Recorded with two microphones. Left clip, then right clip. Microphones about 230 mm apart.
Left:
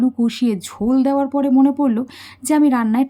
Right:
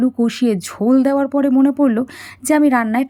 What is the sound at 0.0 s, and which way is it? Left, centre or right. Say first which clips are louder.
Speech: right 2 dB; centre.